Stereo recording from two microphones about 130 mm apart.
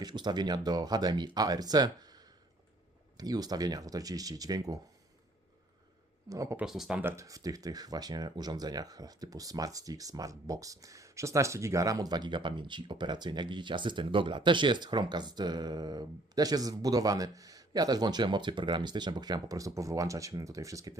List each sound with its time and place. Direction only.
0.0 s speech: 35° right (ahead or behind)
6.2 s speech: 25° right (ahead or behind)
6.6 s speech: 5° right (ahead or behind)
7.0 s speech: 25° right (ahead or behind)